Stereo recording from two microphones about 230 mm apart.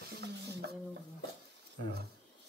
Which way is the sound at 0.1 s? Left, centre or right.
Right.